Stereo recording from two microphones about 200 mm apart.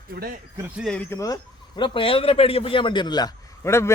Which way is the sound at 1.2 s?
20° left (ahead or behind).